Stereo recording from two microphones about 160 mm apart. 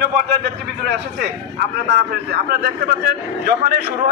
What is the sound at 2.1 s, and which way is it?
A man's voice, 75° right (ahead or behind).